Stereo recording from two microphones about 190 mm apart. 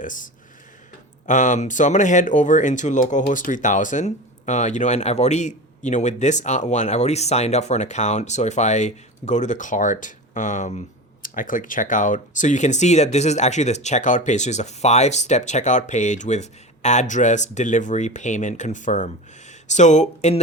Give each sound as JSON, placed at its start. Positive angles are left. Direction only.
{"t": 0.0, "sound": "speech", "side_deg": 45}
{"t": 1.3, "sound": "speech", "side_deg": 40}